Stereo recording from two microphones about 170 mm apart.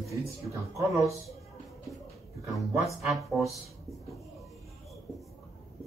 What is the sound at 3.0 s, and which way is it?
Speech, centre (ahead or behind).